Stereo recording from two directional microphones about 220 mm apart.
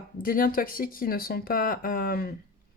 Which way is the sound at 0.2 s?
40° left (ahead or behind).